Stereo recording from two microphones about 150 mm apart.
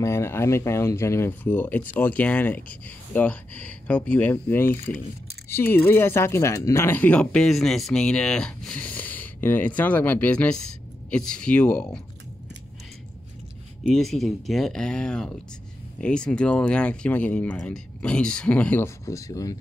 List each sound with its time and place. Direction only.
0.0 s speech: 20° left (ahead or behind)
13.8 s speech: centre (ahead or behind)
19.0 s speech: 20° left (ahead or behind)